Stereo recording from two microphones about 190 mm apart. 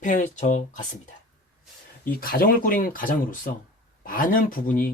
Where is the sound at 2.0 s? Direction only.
50° left (ahead or behind).